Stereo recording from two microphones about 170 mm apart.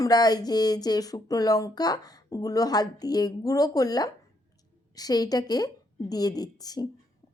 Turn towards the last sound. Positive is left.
turn(degrees=20)  # may be behind; listen again after turning